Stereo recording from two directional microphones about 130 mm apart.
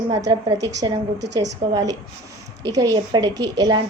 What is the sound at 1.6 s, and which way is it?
A woman's voice, 30° right (ahead or behind).